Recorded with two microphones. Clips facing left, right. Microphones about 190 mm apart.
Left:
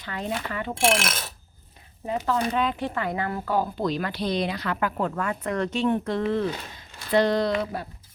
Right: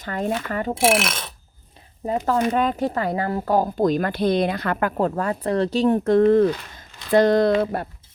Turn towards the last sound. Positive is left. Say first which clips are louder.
# right 7 dB
turn(degrees=-55)  # may be behind; listen again after turning